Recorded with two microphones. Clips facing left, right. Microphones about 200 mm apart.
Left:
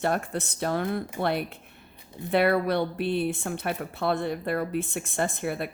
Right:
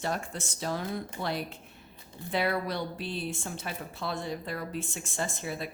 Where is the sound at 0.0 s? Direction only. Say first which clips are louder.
Left 6 dB; 60° left (ahead or behind).